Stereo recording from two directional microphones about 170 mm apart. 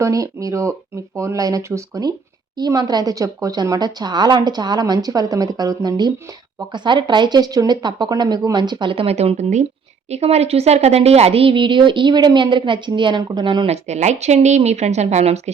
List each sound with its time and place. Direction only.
0.0 s a woman's voice: 20° right (ahead or behind)
13.8 s speech: 40° right (ahead or behind)